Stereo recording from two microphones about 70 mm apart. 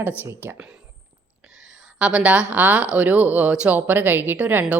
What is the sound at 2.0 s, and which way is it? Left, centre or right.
A woman's voice, centre.